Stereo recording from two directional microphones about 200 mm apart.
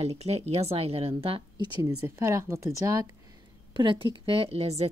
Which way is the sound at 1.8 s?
15° right (ahead or behind).